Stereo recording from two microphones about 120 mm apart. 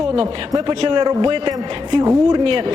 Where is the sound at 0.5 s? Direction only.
40° right (ahead or behind).